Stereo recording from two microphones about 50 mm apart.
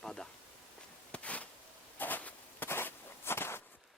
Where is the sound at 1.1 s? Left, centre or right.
Left.